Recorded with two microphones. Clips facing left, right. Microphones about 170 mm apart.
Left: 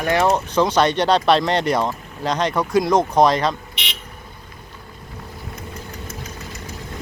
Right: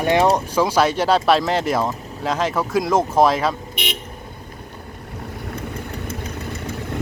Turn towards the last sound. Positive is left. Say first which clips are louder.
# right 5 dB
turn(degrees=-55)  # may be behind; listen again after turning